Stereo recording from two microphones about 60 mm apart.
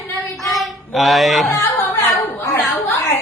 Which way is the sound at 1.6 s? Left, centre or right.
Left.